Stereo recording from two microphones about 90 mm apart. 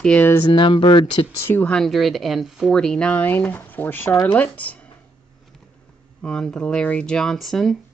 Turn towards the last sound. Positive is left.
turn(degrees=0)  # may be behind; listen again after turning